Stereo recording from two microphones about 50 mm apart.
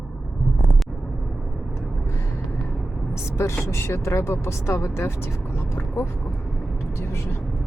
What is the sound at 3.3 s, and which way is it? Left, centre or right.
Speech, left.